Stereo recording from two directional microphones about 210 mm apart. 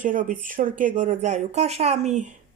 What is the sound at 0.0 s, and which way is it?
Speech, 40° right (ahead or behind).